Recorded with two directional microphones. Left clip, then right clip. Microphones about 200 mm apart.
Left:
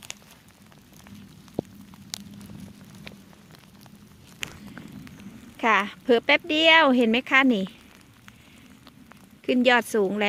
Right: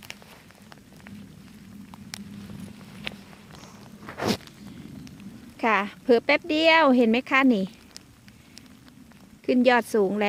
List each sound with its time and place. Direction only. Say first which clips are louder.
3.1 s walk: right 9 dB; 30° right (ahead or behind)
5.5 s speech: left 2 dB; centre (ahead or behind)
9.5 s speech: even; centre (ahead or behind)